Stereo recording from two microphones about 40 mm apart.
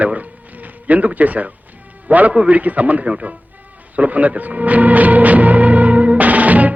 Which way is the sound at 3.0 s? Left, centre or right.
Right.